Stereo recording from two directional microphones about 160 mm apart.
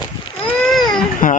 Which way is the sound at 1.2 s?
60° left (ahead or behind).